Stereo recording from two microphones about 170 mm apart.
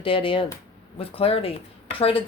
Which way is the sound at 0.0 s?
30° left (ahead or behind).